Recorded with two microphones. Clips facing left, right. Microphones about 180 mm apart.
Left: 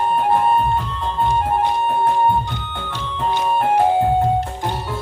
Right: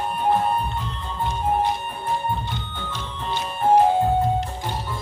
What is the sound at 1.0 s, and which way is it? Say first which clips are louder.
Music: left 6 dB; 75° left (ahead or behind).